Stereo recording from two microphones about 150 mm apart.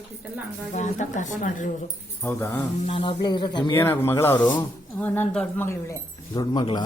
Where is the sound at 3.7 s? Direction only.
15° left (ahead or behind).